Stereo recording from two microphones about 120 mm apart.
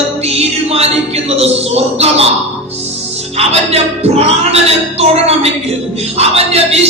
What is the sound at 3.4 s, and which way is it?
Speech, 60° right (ahead or behind).